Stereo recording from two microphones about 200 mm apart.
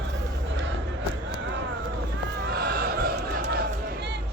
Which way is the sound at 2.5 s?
50° right (ahead or behind).